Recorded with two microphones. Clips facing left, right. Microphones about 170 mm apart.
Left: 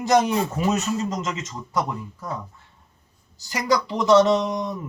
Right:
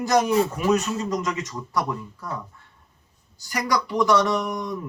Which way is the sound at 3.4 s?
25° left (ahead or behind).